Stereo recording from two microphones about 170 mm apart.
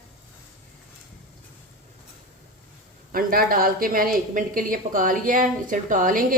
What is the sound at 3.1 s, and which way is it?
A woman's voice, 55° right (ahead or behind).